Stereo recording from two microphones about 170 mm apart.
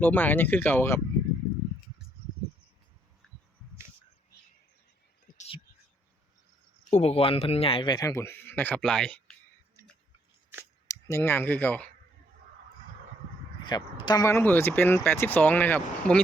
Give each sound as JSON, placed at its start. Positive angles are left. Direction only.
{"t": 0.0, "sound": "speech", "side_deg": 10}
{"t": 6.9, "sound": "speech", "side_deg": 40}
{"t": 10.6, "sound": "a sound", "side_deg": 15}
{"t": 13.7, "sound": "speech", "side_deg": 25}